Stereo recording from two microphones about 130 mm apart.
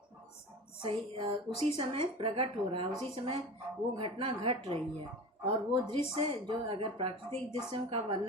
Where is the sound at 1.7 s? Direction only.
45° right (ahead or behind).